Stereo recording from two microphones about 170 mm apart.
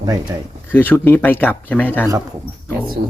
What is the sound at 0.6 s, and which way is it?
Speech, 10° left (ahead or behind).